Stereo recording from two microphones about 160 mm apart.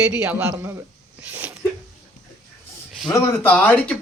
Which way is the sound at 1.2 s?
10° right (ahead or behind).